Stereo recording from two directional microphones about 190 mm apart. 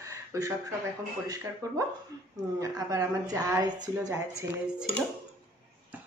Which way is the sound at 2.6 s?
15° right (ahead or behind).